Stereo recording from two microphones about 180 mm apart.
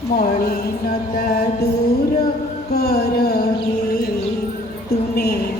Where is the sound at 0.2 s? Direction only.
55° left (ahead or behind).